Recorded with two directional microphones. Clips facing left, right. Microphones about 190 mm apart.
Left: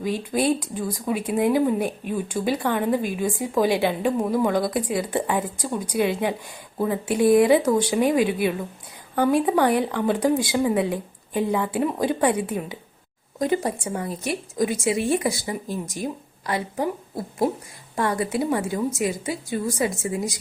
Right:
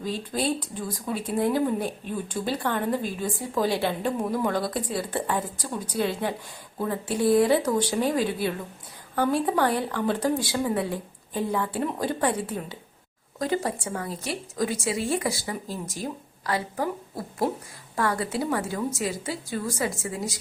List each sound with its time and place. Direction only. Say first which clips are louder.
0.0 s a woman's voice: left 5 dB; 15° left (ahead or behind)